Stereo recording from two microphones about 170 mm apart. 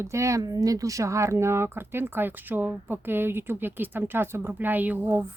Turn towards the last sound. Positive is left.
turn(degrees=-10)  # may be behind; listen again after turning